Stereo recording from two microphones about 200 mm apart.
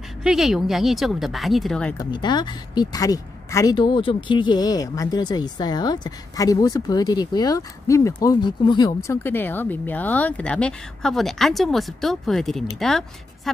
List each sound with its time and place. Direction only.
0.2 s speech: 5° right (ahead or behind)
2.0 s speech: 20° left (ahead or behind); by 13.0 s centre (ahead or behind)